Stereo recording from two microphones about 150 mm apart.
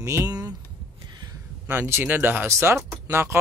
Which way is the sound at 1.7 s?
15° right (ahead or behind).